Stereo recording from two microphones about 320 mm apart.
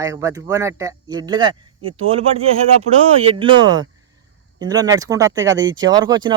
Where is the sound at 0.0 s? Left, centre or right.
Centre.